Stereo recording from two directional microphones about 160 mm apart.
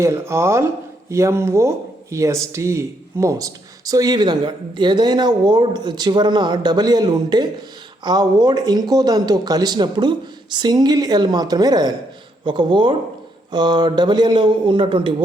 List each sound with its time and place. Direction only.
0.0 s speech: 15° right (ahead or behind)